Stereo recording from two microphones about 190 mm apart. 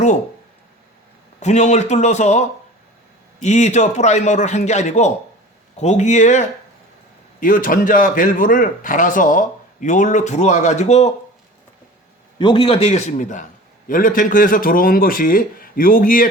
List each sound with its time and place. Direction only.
1.4 s a man's voice: 40° left (ahead or behind)
3.4 s a man's voice: 40° left (ahead or behind)
12.4 s a man's voice: 25° left (ahead or behind); by 16.3 s 45° left (ahead or behind)